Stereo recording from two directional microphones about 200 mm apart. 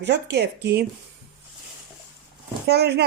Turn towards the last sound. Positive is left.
turn(degrees=-55)  # may be behind; listen again after turning